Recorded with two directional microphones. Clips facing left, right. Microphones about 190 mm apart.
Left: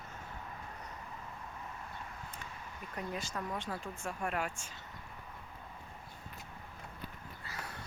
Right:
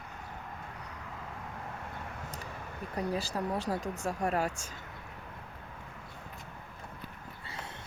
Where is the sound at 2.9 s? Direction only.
35° right (ahead or behind).